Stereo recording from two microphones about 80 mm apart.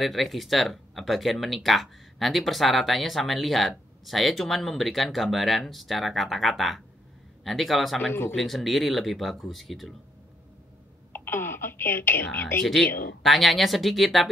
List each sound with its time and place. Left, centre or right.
0.0 s speech: centre
8.0 s speech: left
8.4 s speech: centre
11.1 s speech: left
12.6 s speech: centre